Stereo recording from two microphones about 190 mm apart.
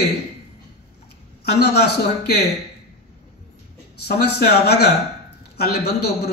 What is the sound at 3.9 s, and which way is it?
A man's voice, 60° left (ahead or behind).